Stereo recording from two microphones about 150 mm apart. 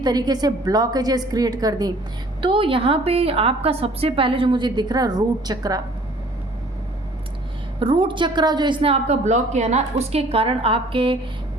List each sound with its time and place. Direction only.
0.0 s a woman's voice: 25° right (ahead or behind)
2.4 s a woman's voice: 35° right (ahead or behind)
7.8 s a woman's voice: 35° right (ahead or behind)